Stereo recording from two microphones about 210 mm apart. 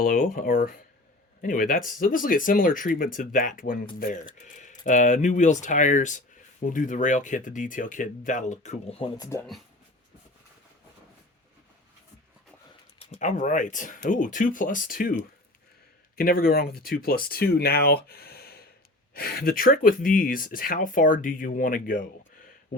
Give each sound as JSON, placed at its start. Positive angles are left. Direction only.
{"t": 0.0, "sound": "speech", "side_deg": 40}
{"t": 13.0, "sound": "speech", "side_deg": 35}
{"t": 16.1, "sound": "speech", "side_deg": 45}